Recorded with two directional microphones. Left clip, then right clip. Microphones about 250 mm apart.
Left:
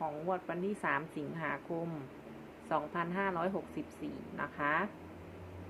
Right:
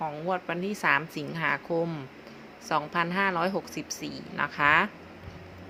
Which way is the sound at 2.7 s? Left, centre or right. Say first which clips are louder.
Right 8 dB; right.